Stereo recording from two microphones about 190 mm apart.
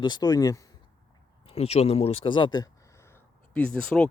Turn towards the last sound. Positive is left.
turn(degrees=5)  # may be behind; listen again after turning